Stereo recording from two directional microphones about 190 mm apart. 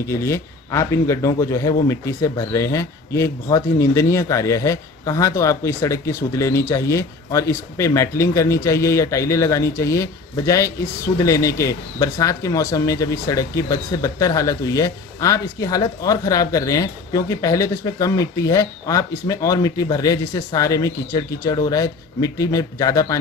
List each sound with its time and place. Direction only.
0.1 s speech: 15° left (ahead or behind)